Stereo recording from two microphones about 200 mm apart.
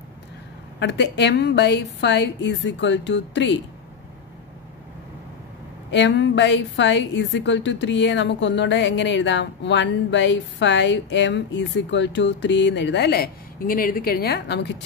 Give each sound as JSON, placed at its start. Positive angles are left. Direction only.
{"t": 0.7, "sound": "a woman's voice", "side_deg": 60}
{"t": 5.9, "sound": "a woman's voice", "side_deg": 65}